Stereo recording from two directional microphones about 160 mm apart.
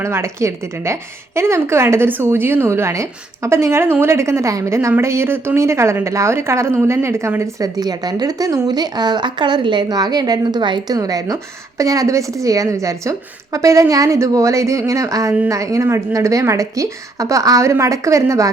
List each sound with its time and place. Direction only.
0.0 s a woman's voice: 15° right (ahead or behind)